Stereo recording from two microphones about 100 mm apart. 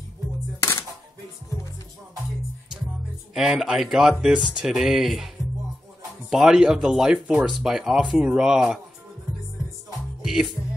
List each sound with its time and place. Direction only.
0.6 s music: 25° left (ahead or behind)
3.3 s speech: 5° right (ahead or behind)
6.3 s speech: 5° right (ahead or behind)
10.2 s music: 5° right (ahead or behind)